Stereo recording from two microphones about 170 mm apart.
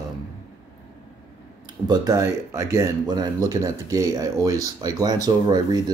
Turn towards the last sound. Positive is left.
turn(degrees=-25)  # may be behind; listen again after turning